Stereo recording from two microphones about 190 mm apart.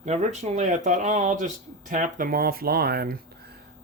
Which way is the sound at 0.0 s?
35° right (ahead or behind).